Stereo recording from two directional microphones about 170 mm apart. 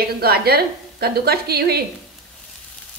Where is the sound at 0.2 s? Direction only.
65° right (ahead or behind).